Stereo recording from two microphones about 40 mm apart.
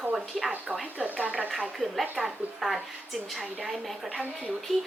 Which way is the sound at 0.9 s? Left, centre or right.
Right.